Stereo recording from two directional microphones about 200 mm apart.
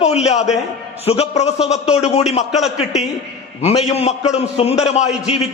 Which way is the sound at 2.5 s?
Centre (ahead or behind).